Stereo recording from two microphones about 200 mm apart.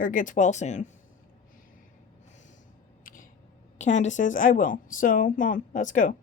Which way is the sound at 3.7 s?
35° left (ahead or behind).